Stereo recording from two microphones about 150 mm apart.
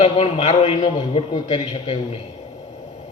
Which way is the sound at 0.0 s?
40° left (ahead or behind).